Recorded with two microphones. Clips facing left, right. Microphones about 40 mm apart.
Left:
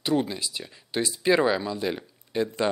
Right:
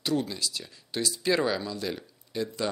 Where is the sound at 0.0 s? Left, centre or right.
Left.